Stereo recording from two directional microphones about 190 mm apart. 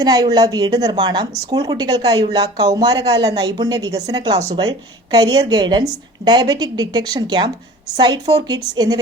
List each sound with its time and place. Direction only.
0.0 s speech: 20° right (ahead or behind)